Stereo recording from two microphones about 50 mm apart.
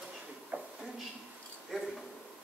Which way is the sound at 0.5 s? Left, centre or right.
Right.